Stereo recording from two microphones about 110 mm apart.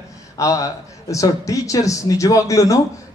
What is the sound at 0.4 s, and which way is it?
A man's voice, 30° left (ahead or behind).